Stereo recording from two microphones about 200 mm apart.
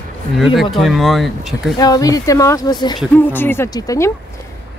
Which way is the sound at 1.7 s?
20° left (ahead or behind).